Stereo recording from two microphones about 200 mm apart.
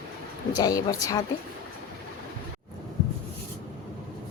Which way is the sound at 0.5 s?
15° left (ahead or behind).